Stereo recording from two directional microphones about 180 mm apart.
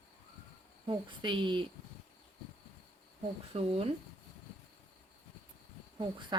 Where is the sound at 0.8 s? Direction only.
25° right (ahead or behind).